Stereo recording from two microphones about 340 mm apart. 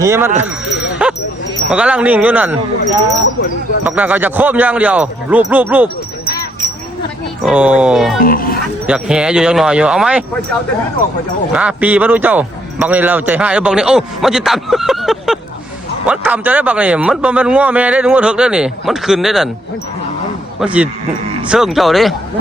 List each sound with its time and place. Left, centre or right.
0.0 s speech: centre
0.3 s dog: centre
1.7 s a man's voice: centre
3.8 s a man's voice: centre
7.4 s a man's voice: centre
8.2 s speech: left
8.9 s a man's voice: centre
11.5 s a man's voice: centre
20.6 s a man's voice: centre